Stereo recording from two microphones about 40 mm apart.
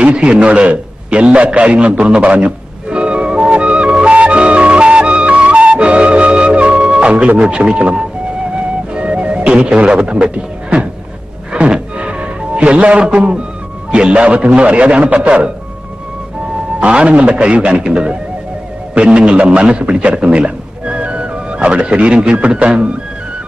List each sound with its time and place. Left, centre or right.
0.0 s a man's voice: right
1.3 s music: right
7.4 s a man's voice: right
8.5 s music: right
13.9 s a man's voice: right
16.8 s a man's voice: right
19.1 s a man's voice: right